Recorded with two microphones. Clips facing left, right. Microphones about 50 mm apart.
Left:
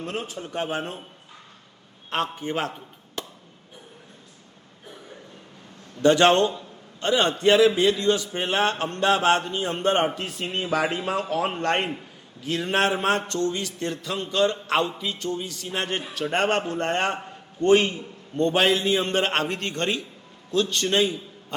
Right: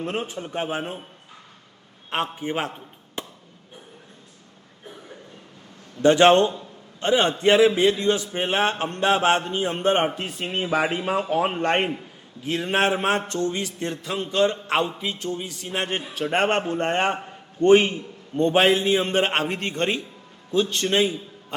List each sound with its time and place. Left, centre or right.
0.0 s a man's voice: right
2.0 s a man's voice: centre
6.0 s a man's voice: centre